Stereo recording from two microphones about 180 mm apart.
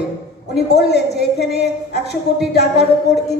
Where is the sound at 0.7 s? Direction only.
65° left (ahead or behind).